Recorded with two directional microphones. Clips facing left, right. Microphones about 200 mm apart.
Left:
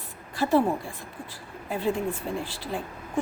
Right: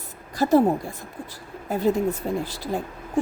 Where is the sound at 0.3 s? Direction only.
40° right (ahead or behind).